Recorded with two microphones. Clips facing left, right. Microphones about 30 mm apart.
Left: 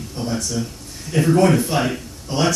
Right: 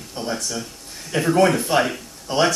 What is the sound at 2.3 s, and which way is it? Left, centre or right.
Speech, centre.